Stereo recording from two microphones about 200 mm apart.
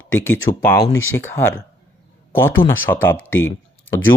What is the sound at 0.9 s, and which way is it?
Speech, 85° left.